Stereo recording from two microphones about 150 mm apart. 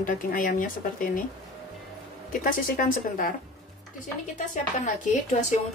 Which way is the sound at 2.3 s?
65° left (ahead or behind).